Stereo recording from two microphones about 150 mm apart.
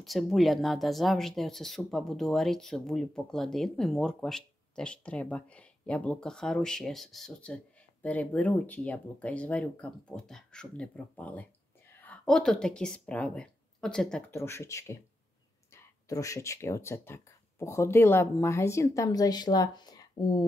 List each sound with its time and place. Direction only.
0.0 s speech: centre (ahead or behind)
14.3 s speech: 15° left (ahead or behind)